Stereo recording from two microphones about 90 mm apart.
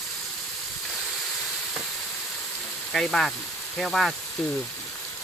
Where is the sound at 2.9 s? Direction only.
5° left (ahead or behind).